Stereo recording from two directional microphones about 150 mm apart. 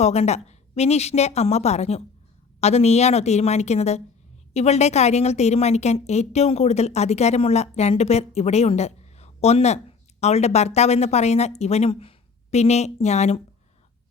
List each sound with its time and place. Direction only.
0.0 s a woman's voice: 45° left (ahead or behind)